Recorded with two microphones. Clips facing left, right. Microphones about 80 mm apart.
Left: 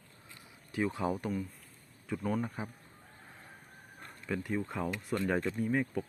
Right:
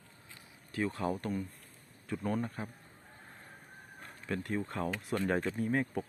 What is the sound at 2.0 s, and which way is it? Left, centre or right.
Speech, centre.